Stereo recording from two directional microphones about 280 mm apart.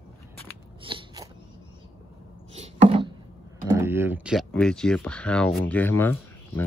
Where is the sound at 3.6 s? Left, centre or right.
Centre.